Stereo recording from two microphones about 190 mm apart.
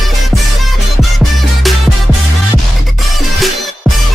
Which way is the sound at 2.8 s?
Centre (ahead or behind).